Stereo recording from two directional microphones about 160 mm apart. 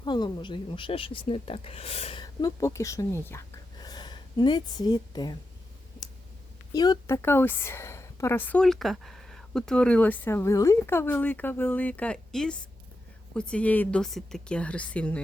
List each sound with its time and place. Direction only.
0.0 s speech: 30° left (ahead or behind)
2.2 s a woman's voice: 20° left (ahead or behind)
3.8 s a woman's voice: 25° left (ahead or behind)
6.7 s a woman's voice: 25° left (ahead or behind)
7.2 s speech: 15° left (ahead or behind)